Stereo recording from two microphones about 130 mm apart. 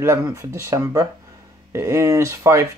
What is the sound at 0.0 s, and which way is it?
Speech, 20° right (ahead or behind).